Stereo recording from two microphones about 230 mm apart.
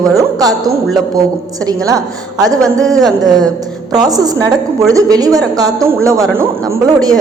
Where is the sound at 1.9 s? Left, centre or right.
Centre.